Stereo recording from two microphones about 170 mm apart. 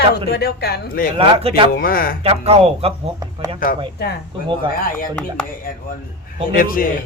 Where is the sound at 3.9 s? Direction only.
70° left (ahead or behind).